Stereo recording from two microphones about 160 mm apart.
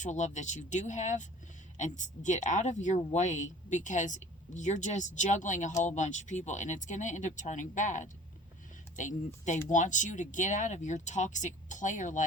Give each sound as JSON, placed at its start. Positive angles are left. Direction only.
{"t": 0.0, "sound": "speech", "side_deg": 50}